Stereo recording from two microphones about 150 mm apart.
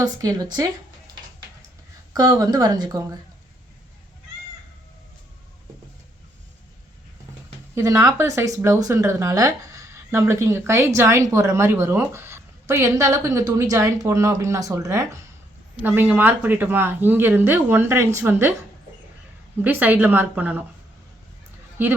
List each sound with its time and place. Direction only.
0.0 s a woman's voice: 25° right (ahead or behind)
2.1 s a woman's voice: 25° right (ahead or behind)
7.8 s a woman's voice: 20° right (ahead or behind)
19.6 s speech: 10° right (ahead or behind)
21.8 s speech: 15° right (ahead or behind)